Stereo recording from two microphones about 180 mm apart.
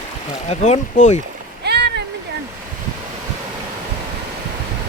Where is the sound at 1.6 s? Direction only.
65° right (ahead or behind).